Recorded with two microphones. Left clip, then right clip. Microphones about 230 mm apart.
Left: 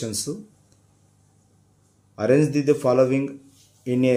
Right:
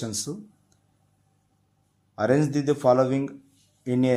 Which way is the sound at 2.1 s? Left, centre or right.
Centre.